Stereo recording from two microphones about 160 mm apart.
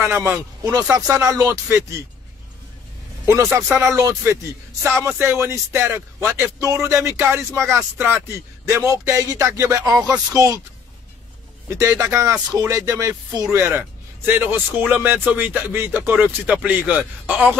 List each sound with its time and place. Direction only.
0.0 s speech: 15° right (ahead or behind)
3.6 s speech: 15° right (ahead or behind)
11.7 s speech: 20° right (ahead or behind)